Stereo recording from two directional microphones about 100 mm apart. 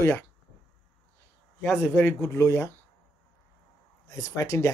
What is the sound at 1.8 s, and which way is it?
Speech, 25° left (ahead or behind).